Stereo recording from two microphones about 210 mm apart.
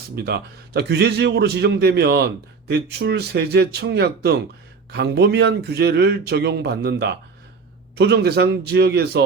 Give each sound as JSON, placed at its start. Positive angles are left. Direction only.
{"t": 0.3, "sound": "a man's voice", "side_deg": -50}